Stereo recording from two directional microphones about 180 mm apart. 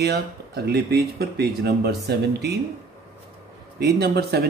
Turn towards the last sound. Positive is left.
turn(degrees=-65)  # may be behind; listen again after turning